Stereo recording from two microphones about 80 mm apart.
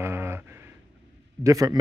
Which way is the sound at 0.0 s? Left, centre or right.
Right.